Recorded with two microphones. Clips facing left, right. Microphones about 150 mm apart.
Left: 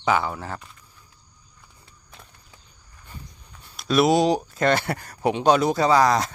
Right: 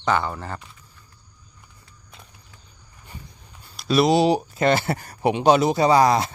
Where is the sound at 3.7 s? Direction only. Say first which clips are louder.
Right 1 dB; centre (ahead or behind).